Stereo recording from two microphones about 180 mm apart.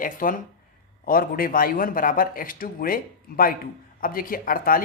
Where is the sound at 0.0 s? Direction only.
50° left (ahead or behind).